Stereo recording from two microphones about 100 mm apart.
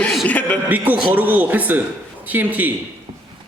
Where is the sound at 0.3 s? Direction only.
15° left (ahead or behind).